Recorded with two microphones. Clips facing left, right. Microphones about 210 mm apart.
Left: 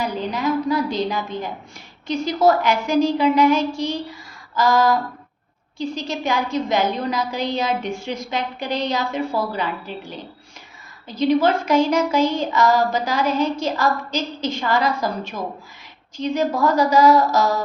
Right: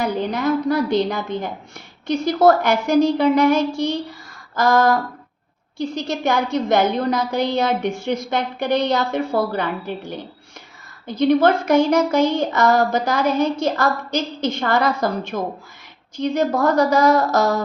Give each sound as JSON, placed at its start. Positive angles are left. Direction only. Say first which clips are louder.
{"t": 0.0, "sound": "a woman's voice", "louder": "right 2 dB", "side_deg": -60}